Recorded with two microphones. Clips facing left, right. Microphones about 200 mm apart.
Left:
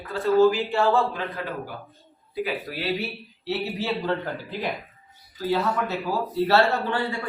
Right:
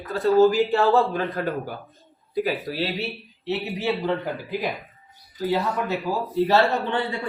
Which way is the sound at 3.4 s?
15° right (ahead or behind).